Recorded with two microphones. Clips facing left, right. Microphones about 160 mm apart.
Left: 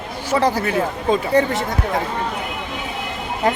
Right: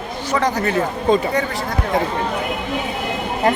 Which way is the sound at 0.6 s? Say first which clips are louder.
Right 1 dB; 10° left (ahead or behind).